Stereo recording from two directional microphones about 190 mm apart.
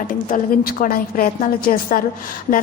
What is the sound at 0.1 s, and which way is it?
A woman's voice, 45° left (ahead or behind).